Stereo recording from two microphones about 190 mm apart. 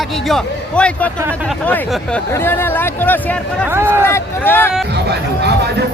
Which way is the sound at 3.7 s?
10° right (ahead or behind).